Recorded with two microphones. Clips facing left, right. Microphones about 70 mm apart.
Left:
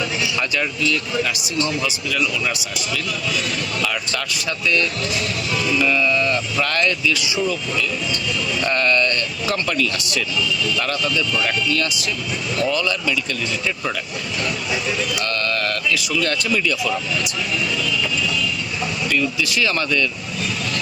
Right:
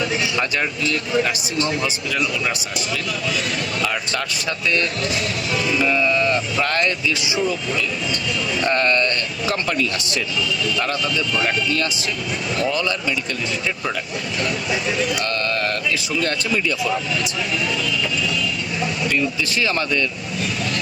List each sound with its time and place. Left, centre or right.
0.2 s a sound: right
0.8 s a man's voice: right
11.3 s a man's voice: right
15.2 s speech: right
19.0 s speech: right